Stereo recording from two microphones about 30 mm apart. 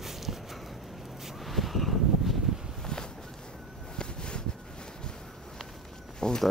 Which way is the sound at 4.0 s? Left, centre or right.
Left.